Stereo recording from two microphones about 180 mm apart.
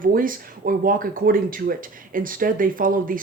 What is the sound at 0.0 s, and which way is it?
Speech, 50° right (ahead or behind).